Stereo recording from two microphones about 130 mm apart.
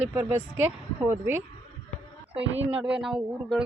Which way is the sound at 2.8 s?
5° right (ahead or behind).